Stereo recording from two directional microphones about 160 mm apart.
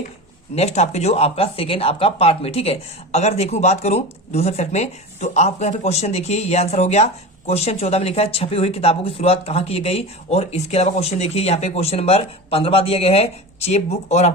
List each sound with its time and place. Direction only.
0.5 s speech: 45° left (ahead or behind)